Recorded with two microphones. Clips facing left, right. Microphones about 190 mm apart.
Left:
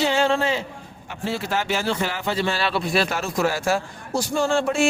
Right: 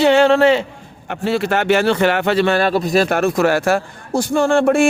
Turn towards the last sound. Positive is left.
turn(degrees=-55)  # may be behind; listen again after turning